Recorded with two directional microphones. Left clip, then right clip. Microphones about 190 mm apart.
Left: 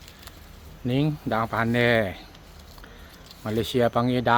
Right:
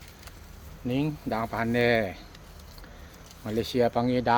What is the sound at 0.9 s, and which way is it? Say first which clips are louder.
Speech: left 4 dB; 50° left (ahead or behind).